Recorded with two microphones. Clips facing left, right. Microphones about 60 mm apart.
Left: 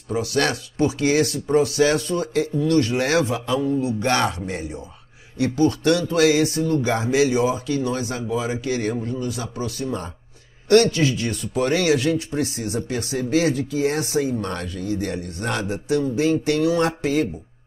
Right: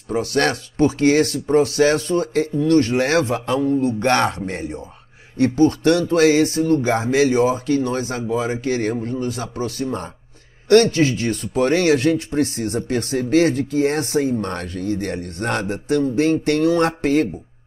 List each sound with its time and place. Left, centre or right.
0.1 s speech: right